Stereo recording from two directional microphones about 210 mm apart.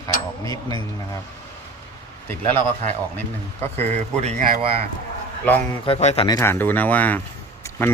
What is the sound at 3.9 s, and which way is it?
Speech, 30° right (ahead or behind).